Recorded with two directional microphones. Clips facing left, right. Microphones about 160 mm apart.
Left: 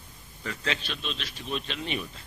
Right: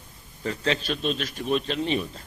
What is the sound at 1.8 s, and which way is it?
Speech, 35° right (ahead or behind).